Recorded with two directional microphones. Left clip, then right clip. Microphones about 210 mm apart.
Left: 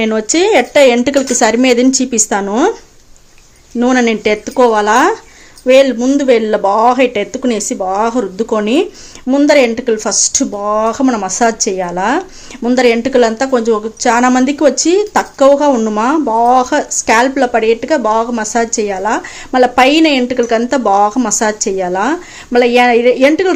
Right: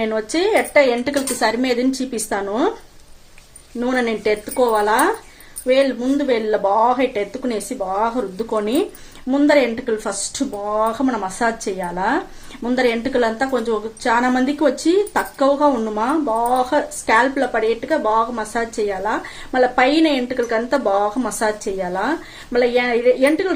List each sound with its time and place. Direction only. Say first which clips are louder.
0.0 s a woman's voice: left 7 dB; 50° left (ahead or behind)
3.8 s a woman's voice: left 8 dB; 50° left (ahead or behind)